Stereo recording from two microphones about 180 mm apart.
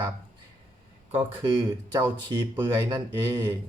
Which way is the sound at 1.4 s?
25° right (ahead or behind).